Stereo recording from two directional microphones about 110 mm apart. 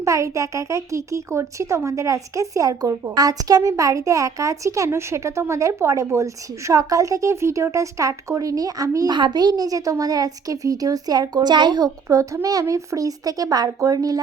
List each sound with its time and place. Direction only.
0.0 s a child's voice: 30° right (ahead or behind)